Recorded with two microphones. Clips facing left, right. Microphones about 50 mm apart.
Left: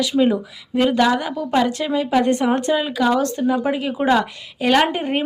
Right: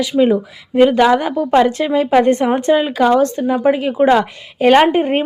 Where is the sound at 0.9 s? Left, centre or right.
Right.